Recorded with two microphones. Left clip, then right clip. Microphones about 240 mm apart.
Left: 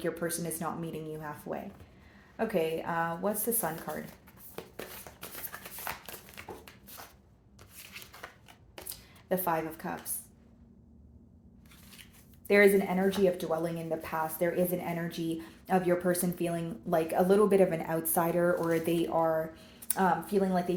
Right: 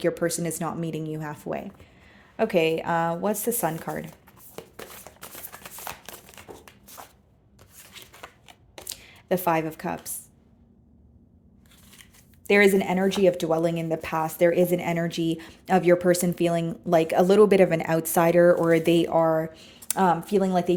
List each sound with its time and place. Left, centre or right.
0.0 s speech: right
5.5 s shuffling cards: right
8.9 s a sound: right
12.5 s speech: right